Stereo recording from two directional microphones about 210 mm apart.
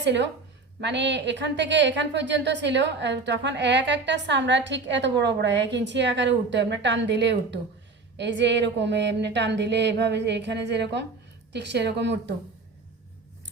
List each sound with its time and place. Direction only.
0.0 s a woman's voice: 55° right (ahead or behind)